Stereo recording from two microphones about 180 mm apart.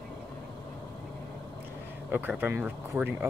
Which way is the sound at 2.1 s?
10° right (ahead or behind).